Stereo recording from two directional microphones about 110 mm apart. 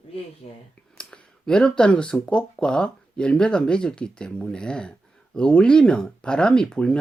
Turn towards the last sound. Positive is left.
turn(degrees=10)  # may be behind; listen again after turning